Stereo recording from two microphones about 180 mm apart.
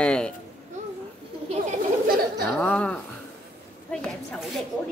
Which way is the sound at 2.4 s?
5° left (ahead or behind).